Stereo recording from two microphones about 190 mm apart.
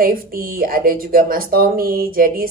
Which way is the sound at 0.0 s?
50° right (ahead or behind).